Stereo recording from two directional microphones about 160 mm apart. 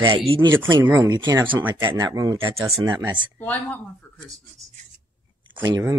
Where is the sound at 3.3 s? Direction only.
10° left (ahead or behind).